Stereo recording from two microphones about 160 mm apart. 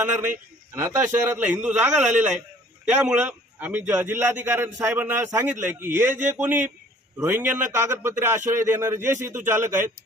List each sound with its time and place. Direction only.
0.0 s a man's voice: 10° right (ahead or behind)
2.1 s a man's voice: 50° right (ahead or behind)
2.8 s a man's voice: 5° right (ahead or behind)